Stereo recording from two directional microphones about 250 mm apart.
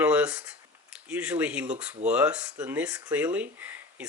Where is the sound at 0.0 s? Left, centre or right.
Centre.